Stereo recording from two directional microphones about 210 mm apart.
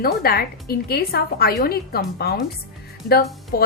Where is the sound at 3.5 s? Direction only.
45° left (ahead or behind).